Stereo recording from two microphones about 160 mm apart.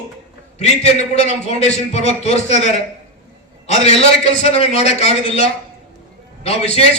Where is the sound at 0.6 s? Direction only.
45° left (ahead or behind).